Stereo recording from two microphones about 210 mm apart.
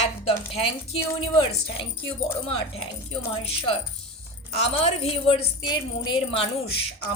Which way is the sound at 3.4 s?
25° left (ahead or behind).